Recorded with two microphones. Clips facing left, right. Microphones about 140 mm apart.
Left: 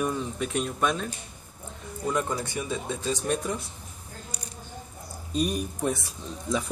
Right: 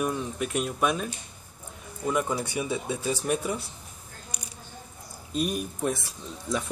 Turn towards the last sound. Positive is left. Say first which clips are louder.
# left 1 dB
turn(degrees=0)  # may be behind; listen again after turning